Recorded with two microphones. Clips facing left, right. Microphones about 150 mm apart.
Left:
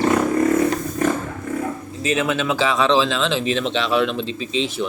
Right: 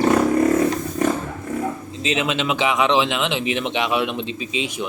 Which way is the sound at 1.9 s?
20° right (ahead or behind).